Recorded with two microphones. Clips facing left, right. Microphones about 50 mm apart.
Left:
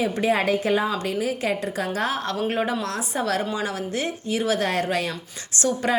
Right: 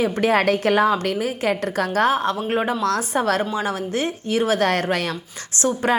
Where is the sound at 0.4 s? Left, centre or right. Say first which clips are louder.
Right 4 dB; right.